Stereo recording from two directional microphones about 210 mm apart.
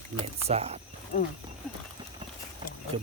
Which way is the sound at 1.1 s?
35° left (ahead or behind).